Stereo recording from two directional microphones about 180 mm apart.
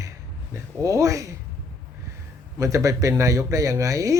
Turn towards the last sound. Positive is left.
turn(degrees=-20)  # may be behind; listen again after turning